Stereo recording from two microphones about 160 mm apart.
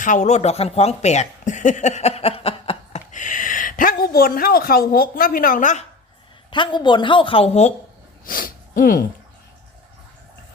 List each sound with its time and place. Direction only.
0.0 s speech: 50° left (ahead or behind)
6.5 s a woman's voice: 30° left (ahead or behind)
8.2 s a sound: 60° left (ahead or behind)